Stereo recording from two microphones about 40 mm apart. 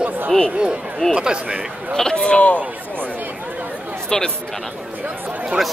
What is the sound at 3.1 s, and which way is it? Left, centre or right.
Chatter, right.